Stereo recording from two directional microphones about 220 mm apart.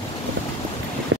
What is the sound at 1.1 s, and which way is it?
Vehicle, 60° right (ahead or behind).